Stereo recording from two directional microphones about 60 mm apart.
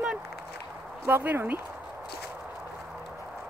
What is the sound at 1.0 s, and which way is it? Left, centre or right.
Speech, right.